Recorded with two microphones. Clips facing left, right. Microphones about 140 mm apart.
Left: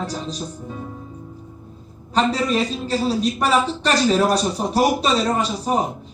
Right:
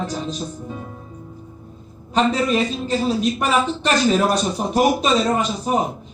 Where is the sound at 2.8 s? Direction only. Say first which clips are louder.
Right 1 dB; 35° left (ahead or behind).